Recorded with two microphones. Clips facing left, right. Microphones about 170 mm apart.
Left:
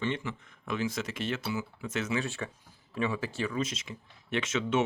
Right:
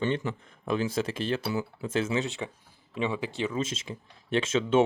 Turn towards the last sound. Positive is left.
turn(degrees=-30)  # may be behind; listen again after turning